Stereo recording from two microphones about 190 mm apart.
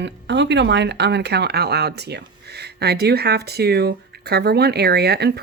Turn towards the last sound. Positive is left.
turn(degrees=-60)  # may be behind; listen again after turning